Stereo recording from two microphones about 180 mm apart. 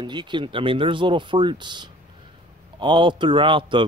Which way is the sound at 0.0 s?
25° right (ahead or behind).